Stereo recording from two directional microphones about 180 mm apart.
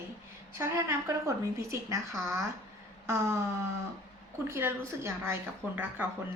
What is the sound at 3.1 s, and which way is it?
Speech, 15° right (ahead or behind).